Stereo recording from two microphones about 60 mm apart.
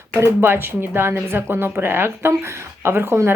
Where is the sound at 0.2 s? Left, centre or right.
Right.